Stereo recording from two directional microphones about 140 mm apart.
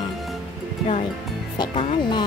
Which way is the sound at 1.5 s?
30° left (ahead or behind).